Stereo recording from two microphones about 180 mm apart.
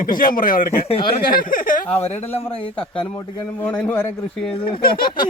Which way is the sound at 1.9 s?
10° left (ahead or behind).